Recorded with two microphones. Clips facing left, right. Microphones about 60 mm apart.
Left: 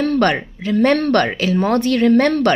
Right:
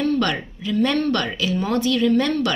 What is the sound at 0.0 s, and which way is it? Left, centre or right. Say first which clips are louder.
Speech: left 5 dB; left.